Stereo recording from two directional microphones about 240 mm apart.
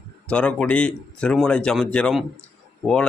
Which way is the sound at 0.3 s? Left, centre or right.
Centre.